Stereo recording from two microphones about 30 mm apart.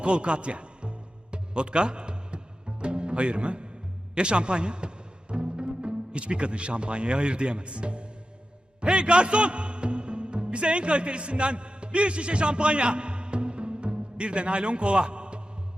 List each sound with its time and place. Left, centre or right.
0.0 s music: right
5.3 s a man's voice: right